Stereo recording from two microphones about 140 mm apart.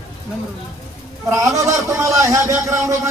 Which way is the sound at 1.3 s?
20° right (ahead or behind).